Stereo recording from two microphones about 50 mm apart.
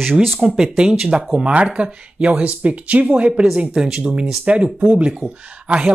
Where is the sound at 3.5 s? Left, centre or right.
Centre.